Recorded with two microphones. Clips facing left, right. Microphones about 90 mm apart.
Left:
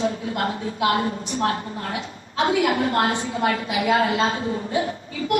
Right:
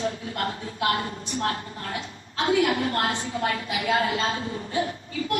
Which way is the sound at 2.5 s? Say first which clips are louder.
Left 1 dB; 30° left (ahead or behind).